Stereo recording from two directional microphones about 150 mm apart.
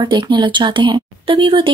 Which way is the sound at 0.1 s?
30° right (ahead or behind).